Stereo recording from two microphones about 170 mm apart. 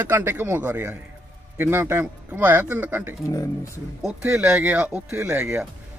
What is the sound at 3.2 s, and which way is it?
Speech, 20° left (ahead or behind).